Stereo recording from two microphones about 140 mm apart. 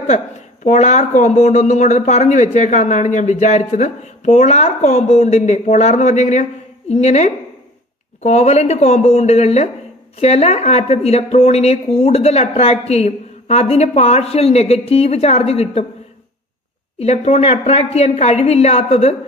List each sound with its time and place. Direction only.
0.7 s a woman's voice: 55° left (ahead or behind)
17.0 s a woman's voice: 50° left (ahead or behind)